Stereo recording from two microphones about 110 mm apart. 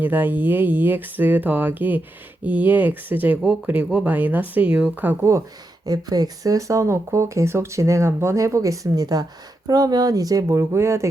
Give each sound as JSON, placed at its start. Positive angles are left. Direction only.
{"t": 0.0, "sound": "speech", "side_deg": -15}
{"t": 5.8, "sound": "speech", "side_deg": -35}